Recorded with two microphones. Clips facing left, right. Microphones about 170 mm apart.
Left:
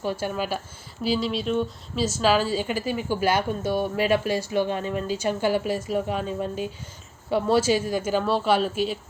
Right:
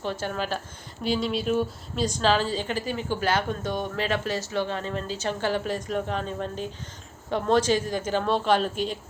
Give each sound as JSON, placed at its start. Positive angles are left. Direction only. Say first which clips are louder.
{"t": 0.0, "sound": "a woman's voice", "louder": "left 2 dB", "side_deg": 10}